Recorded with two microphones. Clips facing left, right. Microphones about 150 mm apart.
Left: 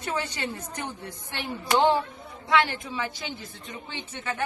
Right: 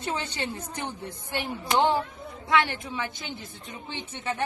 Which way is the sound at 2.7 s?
20° right (ahead or behind).